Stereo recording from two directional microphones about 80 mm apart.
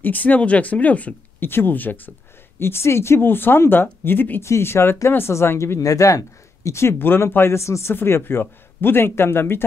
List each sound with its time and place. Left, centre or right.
0.0 s speech: left
5.8 s speech: left